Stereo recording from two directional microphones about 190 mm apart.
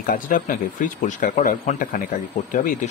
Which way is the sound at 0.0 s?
45° left (ahead or behind).